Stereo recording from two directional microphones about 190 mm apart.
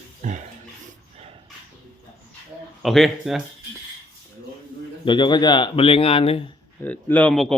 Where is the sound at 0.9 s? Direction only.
30° right (ahead or behind).